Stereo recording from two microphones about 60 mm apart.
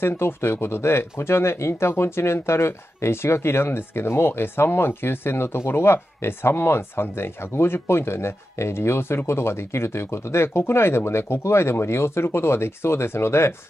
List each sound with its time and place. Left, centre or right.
0.0 s speech: left